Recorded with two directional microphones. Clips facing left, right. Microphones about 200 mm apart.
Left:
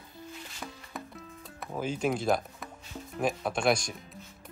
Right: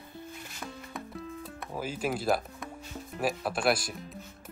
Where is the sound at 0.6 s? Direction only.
Centre (ahead or behind).